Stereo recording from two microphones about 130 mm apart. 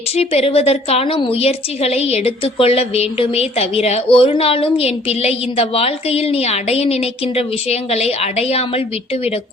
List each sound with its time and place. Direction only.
0.2 s a woman's voice: 50° left (ahead or behind)